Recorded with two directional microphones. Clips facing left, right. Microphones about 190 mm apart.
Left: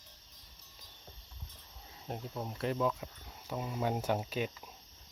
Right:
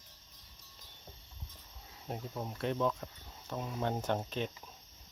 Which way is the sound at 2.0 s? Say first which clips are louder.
Even; centre (ahead or behind).